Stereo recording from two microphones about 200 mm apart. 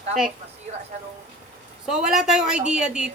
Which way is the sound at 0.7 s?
35° right (ahead or behind).